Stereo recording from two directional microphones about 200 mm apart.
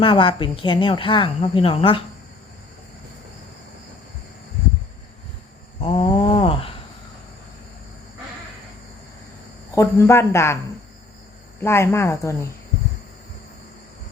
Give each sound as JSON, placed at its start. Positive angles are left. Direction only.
{"t": 0.0, "sound": "a woman's voice", "side_deg": 25}
{"t": 5.8, "sound": "a sound", "side_deg": 30}
{"t": 9.7, "sound": "speech", "side_deg": 15}
{"t": 11.6, "sound": "speech", "side_deg": 15}